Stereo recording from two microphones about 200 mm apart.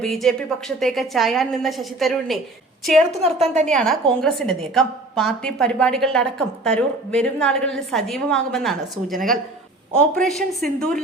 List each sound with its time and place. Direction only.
0.0 s a woman's voice: centre (ahead or behind)
3.1 s a woman's voice: 30° right (ahead or behind)
3.7 s a woman's voice: 5° left (ahead or behind)